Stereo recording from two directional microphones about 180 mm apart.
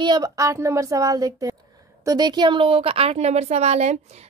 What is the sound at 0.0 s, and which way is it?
A woman's voice, 20° right (ahead or behind).